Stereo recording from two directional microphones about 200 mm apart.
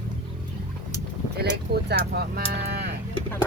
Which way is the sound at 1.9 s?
50° right (ahead or behind).